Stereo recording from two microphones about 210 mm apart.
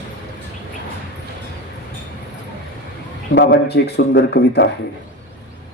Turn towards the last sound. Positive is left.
turn(degrees=55)  # may be behind; listen again after turning